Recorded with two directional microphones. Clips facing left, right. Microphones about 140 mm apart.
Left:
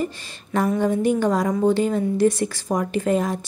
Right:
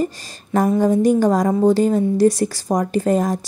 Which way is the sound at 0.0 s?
40° right (ahead or behind).